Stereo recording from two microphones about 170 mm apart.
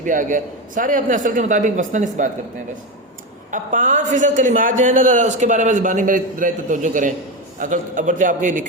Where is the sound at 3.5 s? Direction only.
50° right (ahead or behind).